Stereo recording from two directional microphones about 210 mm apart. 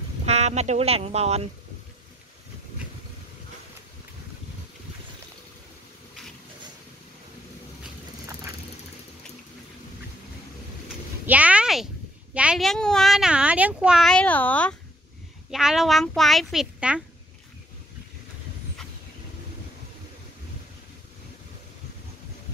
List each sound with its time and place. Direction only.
0.2 s speech: 30° right (ahead or behind)
11.2 s a sound: 5° right (ahead or behind)
12.4 s speech: centre (ahead or behind)